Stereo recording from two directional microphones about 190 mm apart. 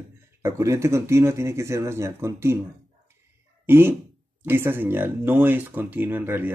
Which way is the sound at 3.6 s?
10° right (ahead or behind).